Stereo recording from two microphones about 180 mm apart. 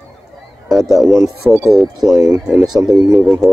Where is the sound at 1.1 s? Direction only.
15° right (ahead or behind).